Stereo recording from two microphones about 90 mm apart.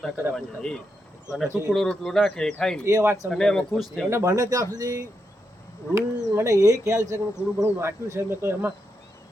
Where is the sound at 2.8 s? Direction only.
35° right (ahead or behind).